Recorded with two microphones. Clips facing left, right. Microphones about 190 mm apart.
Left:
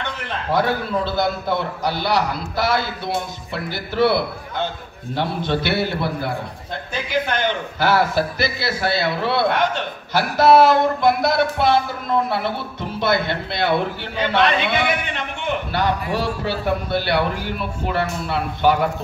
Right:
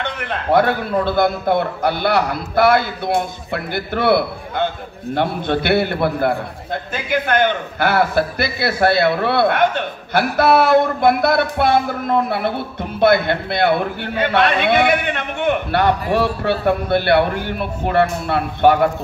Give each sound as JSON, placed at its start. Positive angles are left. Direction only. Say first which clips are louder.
{"t": 0.5, "sound": "a man's voice", "louder": "right 4 dB", "side_deg": -55}
{"t": 13.0, "sound": "a man's voice", "louder": "right 6 dB", "side_deg": -55}